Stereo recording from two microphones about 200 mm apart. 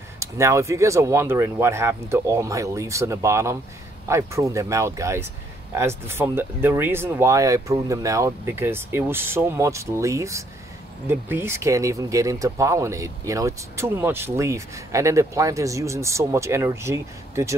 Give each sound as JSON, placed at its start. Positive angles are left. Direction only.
{"t": 0.2, "sound": "speech", "side_deg": -15}